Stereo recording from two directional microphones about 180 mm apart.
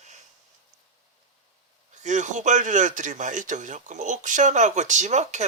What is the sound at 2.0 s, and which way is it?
A man's voice, 40° right (ahead or behind).